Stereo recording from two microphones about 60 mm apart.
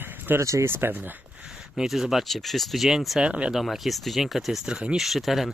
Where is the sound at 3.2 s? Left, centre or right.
Centre.